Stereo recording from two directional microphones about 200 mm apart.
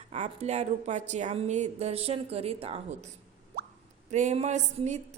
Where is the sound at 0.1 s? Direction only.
35° right (ahead or behind).